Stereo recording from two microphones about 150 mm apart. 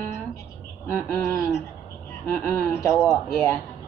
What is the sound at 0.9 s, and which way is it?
Speech, 15° left (ahead or behind).